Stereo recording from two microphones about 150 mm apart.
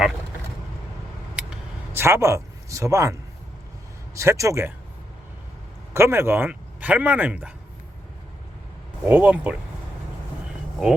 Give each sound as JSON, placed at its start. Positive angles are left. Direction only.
{"t": 1.4, "sound": "vehicle", "side_deg": -5}
{"t": 1.9, "sound": "speech", "side_deg": -15}
{"t": 5.9, "sound": "speech", "side_deg": -15}
{"t": 9.0, "sound": "speech", "side_deg": -10}